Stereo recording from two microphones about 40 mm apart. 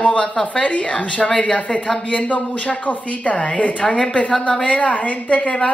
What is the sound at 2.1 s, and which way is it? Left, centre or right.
A woman's voice, left.